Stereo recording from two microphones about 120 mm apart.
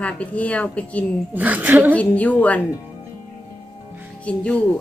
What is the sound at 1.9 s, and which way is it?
Speech, 10° left (ahead or behind).